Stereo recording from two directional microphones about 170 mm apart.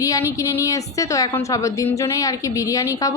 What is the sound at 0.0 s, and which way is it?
A woman's voice, 20° left (ahead or behind).